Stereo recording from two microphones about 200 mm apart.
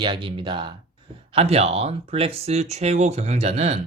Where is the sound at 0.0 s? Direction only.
25° right (ahead or behind).